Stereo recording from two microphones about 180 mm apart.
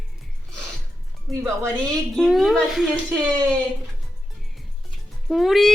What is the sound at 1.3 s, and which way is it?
Child singing, centre (ahead or behind).